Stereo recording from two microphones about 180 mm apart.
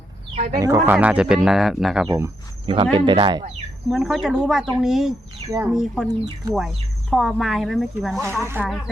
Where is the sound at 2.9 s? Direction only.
25° right (ahead or behind).